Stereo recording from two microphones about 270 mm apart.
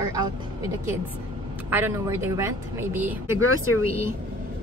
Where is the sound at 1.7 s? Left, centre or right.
Centre.